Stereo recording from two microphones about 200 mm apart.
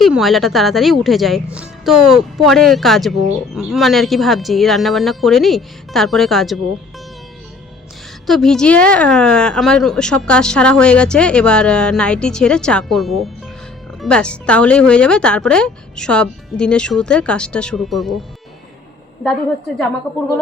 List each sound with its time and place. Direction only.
0.0 s speech: centre (ahead or behind)
8.3 s speech: centre (ahead or behind)
20.1 s speech: centre (ahead or behind)